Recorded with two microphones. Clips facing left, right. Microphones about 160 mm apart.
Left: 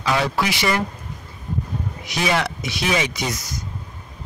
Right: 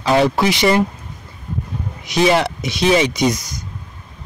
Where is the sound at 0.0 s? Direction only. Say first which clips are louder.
Right 6 dB; 30° right (ahead or behind).